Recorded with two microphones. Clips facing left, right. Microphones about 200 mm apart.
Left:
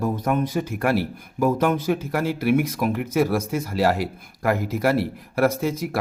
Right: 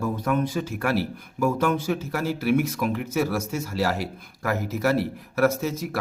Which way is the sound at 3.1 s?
15° left (ahead or behind).